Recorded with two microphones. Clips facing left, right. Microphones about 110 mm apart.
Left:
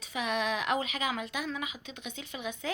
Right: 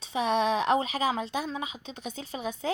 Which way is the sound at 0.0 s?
30° right (ahead or behind).